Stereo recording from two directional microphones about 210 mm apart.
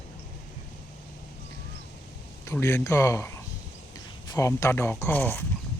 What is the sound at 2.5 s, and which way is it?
Speech, 10° left (ahead or behind).